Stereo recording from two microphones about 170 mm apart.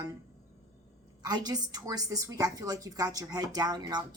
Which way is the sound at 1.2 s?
25° right (ahead or behind).